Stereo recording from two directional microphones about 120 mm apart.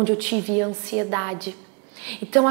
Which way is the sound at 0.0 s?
20° right (ahead or behind).